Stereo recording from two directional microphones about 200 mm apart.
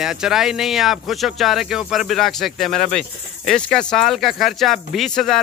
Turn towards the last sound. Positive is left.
turn(degrees=0)  # may be behind; listen again after turning